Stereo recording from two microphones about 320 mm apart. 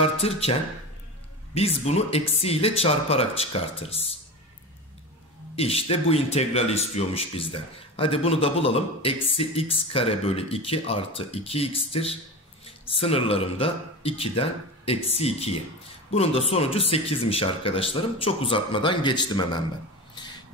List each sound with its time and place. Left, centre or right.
0.0 s speech: centre
5.6 s speech: centre
20.2 s a sound: centre